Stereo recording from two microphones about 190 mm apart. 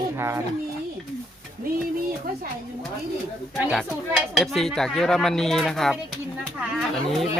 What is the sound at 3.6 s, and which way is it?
Speech, 5° right (ahead or behind).